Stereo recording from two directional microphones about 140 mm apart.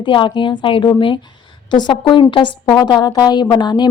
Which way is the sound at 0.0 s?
35° left (ahead or behind).